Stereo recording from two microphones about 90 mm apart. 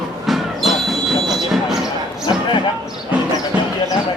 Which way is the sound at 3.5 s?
15° right (ahead or behind).